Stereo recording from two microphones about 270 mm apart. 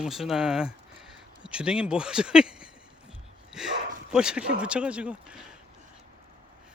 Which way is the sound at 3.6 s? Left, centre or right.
Centre.